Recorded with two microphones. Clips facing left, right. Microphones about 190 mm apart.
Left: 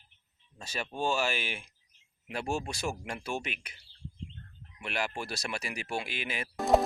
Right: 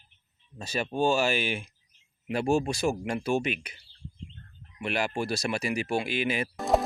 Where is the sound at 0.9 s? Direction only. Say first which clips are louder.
Right 6 dB; 35° right (ahead or behind).